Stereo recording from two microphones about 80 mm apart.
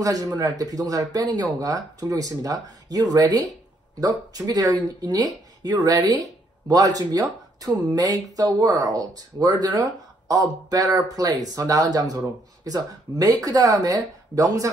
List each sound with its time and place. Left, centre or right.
0.0 s speech: right